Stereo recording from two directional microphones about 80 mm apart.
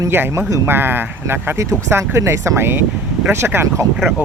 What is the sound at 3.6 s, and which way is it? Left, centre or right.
Speech, right.